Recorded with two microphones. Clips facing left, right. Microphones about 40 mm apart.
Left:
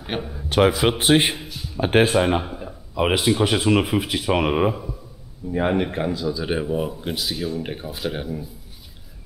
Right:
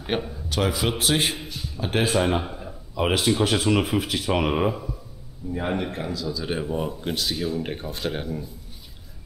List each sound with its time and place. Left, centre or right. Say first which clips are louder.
0.0 s a man's voice: right 1 dB; centre
0.5 s a man's voice: left 7 dB; left
1.3 s a sound: left 1 dB; centre
1.8 s speech: left 7 dB; left
2.1 s speech: left 3 dB; centre
5.7 s a man's voice: left 4 dB; left; by 8.5 s centre